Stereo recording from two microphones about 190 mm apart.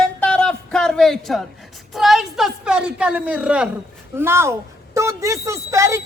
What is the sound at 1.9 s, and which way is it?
A woman's voice, centre (ahead or behind).